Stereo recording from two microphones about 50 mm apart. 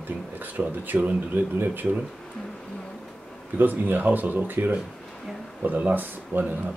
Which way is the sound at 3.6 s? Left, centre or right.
Right.